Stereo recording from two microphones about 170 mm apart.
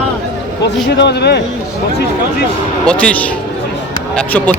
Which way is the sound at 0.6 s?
85° left.